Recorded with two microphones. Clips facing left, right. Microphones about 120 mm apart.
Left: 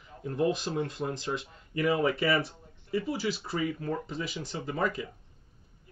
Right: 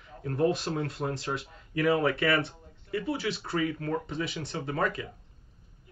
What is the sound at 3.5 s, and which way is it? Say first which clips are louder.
Speech: right 2 dB; 60° right (ahead or behind).